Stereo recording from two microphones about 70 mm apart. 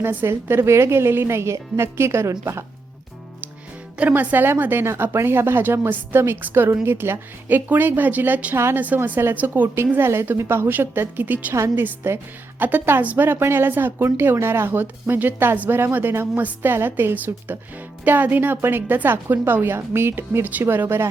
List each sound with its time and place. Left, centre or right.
0.0 s a woman's voice: right
4.1 s a woman's voice: right
9.9 s a woman's voice: right